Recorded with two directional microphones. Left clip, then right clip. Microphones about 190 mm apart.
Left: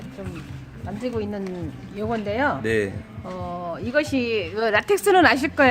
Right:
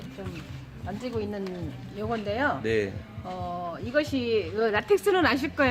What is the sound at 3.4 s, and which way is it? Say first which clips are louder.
Speech: left 4 dB; 35° left (ahead or behind).